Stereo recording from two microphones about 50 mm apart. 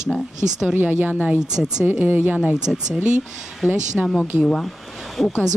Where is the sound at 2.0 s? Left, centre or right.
Right.